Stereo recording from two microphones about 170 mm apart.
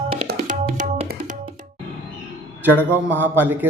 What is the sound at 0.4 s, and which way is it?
Tabla, 50° right (ahead or behind).